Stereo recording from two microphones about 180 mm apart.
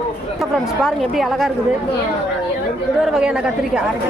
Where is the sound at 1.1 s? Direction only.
Centre (ahead or behind).